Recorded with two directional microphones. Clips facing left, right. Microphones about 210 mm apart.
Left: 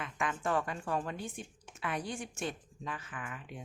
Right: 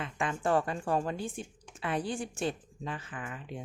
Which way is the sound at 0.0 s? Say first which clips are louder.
Right 3 dB; 30° right (ahead or behind).